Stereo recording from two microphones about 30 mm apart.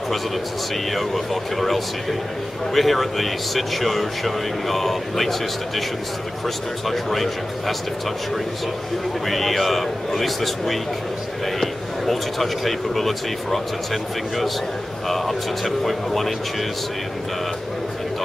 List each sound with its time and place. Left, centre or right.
0.9 s speech: centre
9.2 s speech: centre
15.0 s speech: centre